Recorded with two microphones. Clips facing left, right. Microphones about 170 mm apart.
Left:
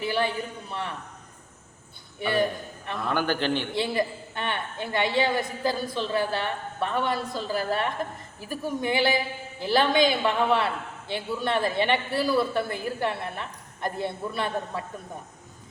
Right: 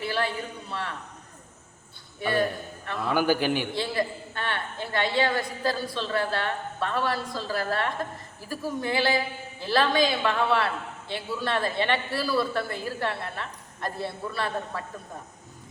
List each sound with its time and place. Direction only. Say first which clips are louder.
0.0 s a sound: left 2 dB; 20° left (ahead or behind)
0.7 s a woman's voice: right 1 dB; 20° left (ahead or behind)
2.3 s a man's voice: left 1 dB; 20° left (ahead or behind)
3.0 s a man's voice: right 3 dB; 5° right (ahead or behind)
3.8 s a woman's voice: left 2 dB; 20° left (ahead or behind)